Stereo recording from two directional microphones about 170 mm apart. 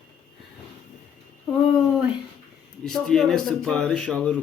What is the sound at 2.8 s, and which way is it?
A man's voice, 5° left (ahead or behind).